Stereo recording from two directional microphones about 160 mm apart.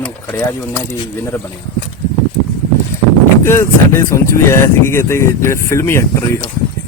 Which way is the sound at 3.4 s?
15° left (ahead or behind).